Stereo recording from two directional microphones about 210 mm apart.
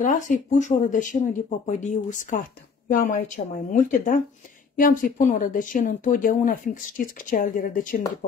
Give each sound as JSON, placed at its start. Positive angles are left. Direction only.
{"t": 0.0, "sound": "speech", "side_deg": 40}